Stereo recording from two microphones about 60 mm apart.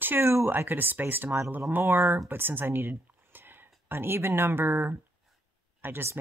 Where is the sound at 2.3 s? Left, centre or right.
Right.